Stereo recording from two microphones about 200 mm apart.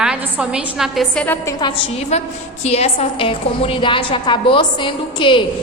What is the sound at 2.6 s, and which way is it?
A woman's voice, 30° left (ahead or behind).